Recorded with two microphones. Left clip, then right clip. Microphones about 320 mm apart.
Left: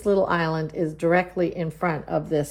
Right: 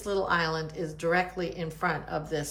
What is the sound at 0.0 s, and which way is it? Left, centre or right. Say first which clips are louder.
A woman's voice: left 6 dB; centre.